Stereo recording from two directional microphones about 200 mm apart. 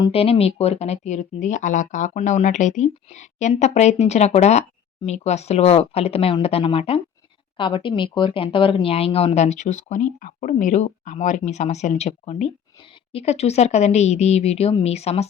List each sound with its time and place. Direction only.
0.0 s speech: 30° left (ahead or behind)